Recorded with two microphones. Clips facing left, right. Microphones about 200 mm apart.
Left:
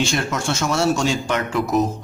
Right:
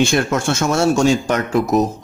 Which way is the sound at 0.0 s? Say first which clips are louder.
Right 6 dB; 55° right (ahead or behind).